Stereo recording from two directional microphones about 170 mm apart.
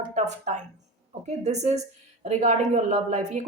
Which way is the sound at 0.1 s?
45° right (ahead or behind).